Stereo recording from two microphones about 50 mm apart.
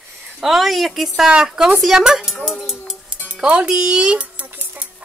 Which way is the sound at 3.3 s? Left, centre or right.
Centre.